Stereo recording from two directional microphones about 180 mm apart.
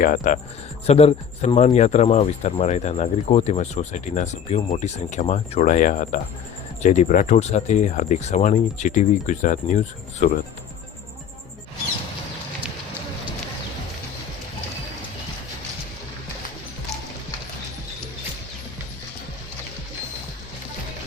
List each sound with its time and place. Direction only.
0.0 s speech: 50° left (ahead or behind)
0.9 s speech: 35° left (ahead or behind)